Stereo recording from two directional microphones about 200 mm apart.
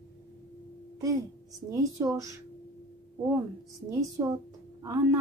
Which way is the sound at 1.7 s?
15° right (ahead or behind).